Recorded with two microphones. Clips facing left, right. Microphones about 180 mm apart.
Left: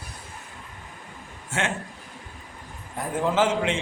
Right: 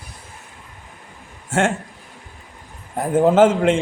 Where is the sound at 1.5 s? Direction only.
50° right (ahead or behind).